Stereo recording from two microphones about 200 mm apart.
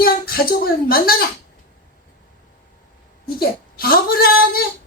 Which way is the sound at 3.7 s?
50° left (ahead or behind).